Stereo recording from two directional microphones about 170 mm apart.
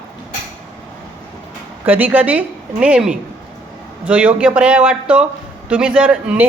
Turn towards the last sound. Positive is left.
turn(degrees=-10)  # may be behind; listen again after turning